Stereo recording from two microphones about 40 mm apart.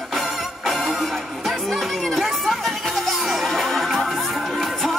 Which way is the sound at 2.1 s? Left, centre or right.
Centre.